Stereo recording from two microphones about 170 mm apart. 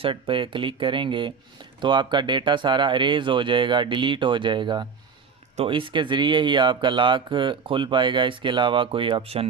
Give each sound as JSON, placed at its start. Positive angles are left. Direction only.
{"t": 0.0, "sound": "speech", "side_deg": -30}